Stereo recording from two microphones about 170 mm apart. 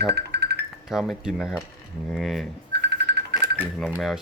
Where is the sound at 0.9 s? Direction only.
Centre (ahead or behind).